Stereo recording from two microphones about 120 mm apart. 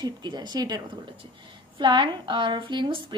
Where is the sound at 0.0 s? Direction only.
35° right (ahead or behind).